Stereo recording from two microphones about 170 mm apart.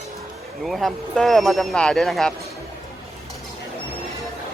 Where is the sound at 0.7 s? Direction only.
Centre (ahead or behind).